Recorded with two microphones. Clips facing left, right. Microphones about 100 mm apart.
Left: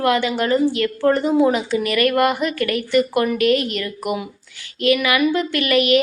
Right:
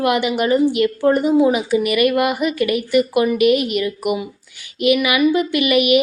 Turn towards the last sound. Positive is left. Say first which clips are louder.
# right 2 dB
turn(degrees=-10)  # may be behind; listen again after turning